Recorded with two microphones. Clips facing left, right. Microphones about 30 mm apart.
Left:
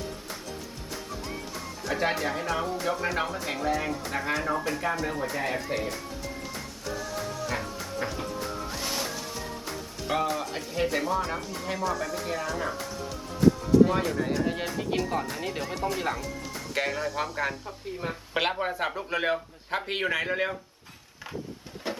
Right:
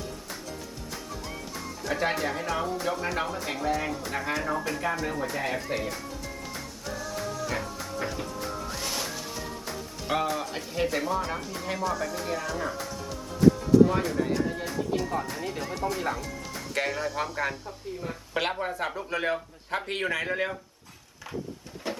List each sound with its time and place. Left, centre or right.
1.1 s music: centre
2.8 s speech: centre
7.4 s music: centre
10.1 s speech: centre
13.9 s a man's voice: centre
18.1 s a woman's voice: centre
21.9 s a sound: centre